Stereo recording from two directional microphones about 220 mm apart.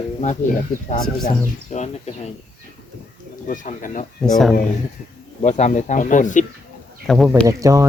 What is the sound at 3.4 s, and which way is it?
Speech, 35° left (ahead or behind).